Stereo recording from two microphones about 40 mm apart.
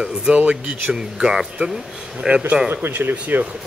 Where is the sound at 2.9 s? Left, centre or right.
Right.